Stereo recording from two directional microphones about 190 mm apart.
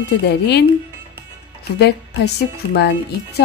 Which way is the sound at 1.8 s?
60° left (ahead or behind).